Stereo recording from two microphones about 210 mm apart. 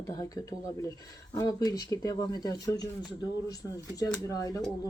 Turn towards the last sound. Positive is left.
turn(degrees=15)  # may be behind; listen again after turning